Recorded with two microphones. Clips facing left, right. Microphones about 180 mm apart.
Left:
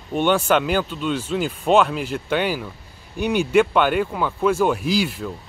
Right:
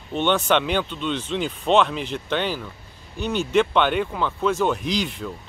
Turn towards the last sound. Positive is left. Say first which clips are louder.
# left 4 dB
turn(degrees=5)  # may be behind; listen again after turning